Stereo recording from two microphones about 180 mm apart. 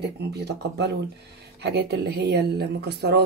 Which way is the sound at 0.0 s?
65° right (ahead or behind).